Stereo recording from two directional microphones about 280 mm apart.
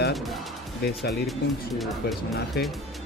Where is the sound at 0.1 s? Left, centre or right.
Centre.